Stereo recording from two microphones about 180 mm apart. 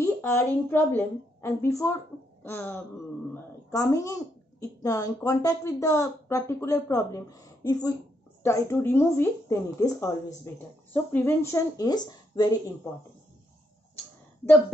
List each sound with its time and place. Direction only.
0.0 s a woman's voice: 15° left (ahead or behind)